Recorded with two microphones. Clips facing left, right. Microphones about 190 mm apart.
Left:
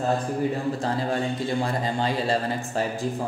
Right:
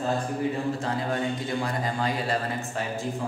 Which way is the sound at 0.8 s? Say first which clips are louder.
Left 2 dB; 30° left (ahead or behind).